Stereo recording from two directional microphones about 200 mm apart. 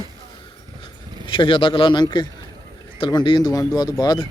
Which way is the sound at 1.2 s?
25° left (ahead or behind).